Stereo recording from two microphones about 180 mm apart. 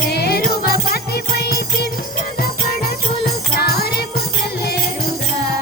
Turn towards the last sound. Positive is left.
turn(degrees=60)  # may be behind; listen again after turning